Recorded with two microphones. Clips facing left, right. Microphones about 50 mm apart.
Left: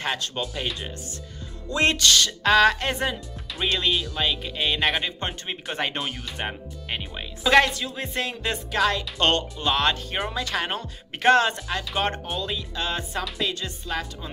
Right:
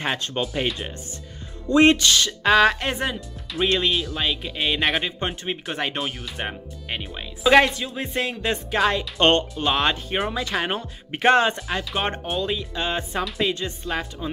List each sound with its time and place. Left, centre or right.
0.0 s speech: right
1.7 s speech: right
8.7 s speech: right
11.5 s speech: centre